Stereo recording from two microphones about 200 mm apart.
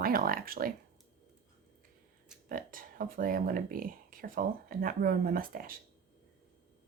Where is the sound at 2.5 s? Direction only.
45° right (ahead or behind).